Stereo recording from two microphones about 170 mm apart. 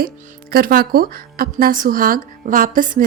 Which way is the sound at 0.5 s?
60° right (ahead or behind).